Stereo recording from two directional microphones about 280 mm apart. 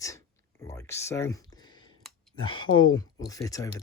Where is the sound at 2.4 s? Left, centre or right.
Centre.